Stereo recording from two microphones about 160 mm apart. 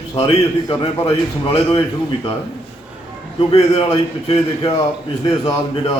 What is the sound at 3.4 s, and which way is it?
Speech, 40° left (ahead or behind).